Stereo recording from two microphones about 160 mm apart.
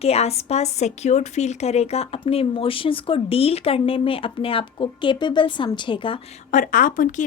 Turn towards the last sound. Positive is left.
turn(degrees=55)  # may be behind; listen again after turning